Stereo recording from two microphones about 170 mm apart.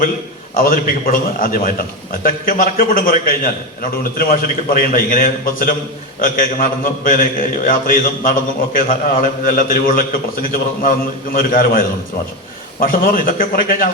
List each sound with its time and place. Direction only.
0.5 s a man's voice: 55° left (ahead or behind)
11.3 s a man's voice: 55° left (ahead or behind)